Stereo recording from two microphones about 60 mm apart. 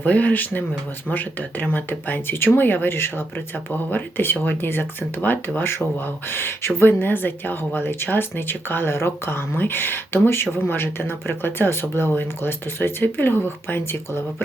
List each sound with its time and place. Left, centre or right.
0.0 s speech: left